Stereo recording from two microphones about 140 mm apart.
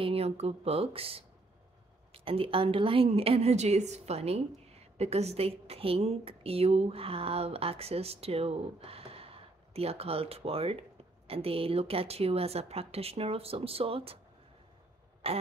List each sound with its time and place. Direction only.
0.0 s a woman's voice: 45° right (ahead or behind)
15.2 s speech: 45° right (ahead or behind)